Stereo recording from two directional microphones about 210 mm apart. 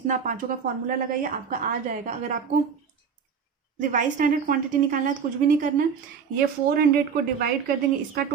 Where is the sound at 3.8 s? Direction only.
40° right (ahead or behind).